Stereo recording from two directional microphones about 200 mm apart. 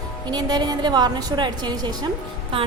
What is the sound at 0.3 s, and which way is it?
A woman's voice, 20° right (ahead or behind).